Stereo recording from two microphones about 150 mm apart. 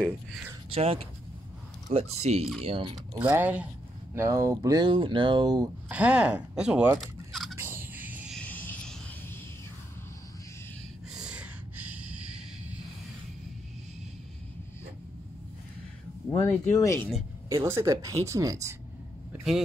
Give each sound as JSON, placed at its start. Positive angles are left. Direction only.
{"t": 0.7, "sound": "speech", "side_deg": -40}
{"t": 3.3, "sound": "speech", "side_deg": -10}
{"t": 5.9, "sound": "speech", "side_deg": -10}
{"t": 7.0, "sound": "fowl", "side_deg": 0}
{"t": 7.5, "sound": "fowl", "side_deg": -15}
{"t": 8.3, "sound": "a sound", "side_deg": 10}
{"t": 11.1, "sound": "a sound", "side_deg": -10}
{"t": 16.3, "sound": "speech", "side_deg": 15}
{"t": 17.5, "sound": "speech", "side_deg": -20}